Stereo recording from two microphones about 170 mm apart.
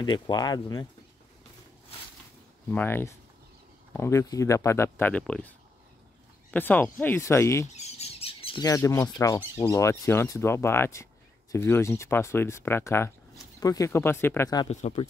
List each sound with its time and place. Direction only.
0.0 s speech: 25° left (ahead or behind)
2.7 s speech: 10° left (ahead or behind)
6.5 s speech: 10° left (ahead or behind)
7.6 s bird: 40° left (ahead or behind)
8.6 s speech: 20° left (ahead or behind)
14.7 s speech: 40° left (ahead or behind)